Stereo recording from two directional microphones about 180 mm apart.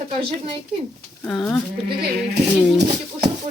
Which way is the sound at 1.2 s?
5° left (ahead or behind).